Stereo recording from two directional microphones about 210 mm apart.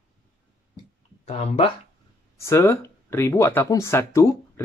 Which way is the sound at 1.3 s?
30° left (ahead or behind).